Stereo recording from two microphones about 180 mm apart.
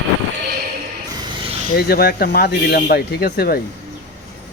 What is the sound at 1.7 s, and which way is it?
Speech, 60° left (ahead or behind).